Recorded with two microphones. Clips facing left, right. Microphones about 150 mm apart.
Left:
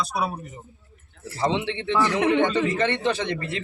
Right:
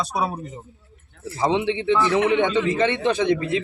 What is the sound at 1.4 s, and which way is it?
A man's voice, 15° right (ahead or behind).